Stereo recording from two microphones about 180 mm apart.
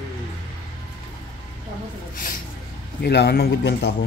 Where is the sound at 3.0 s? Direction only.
60° left (ahead or behind).